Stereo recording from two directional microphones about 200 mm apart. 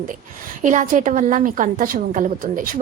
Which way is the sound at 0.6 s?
40° right (ahead or behind).